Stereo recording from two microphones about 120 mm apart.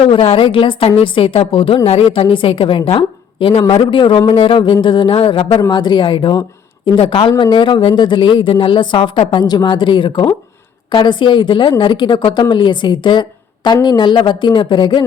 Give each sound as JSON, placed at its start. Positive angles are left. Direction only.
{"t": 0.0, "sound": "a woman's voice", "side_deg": 50}
{"t": 9.4, "sound": "a woman's voice", "side_deg": 35}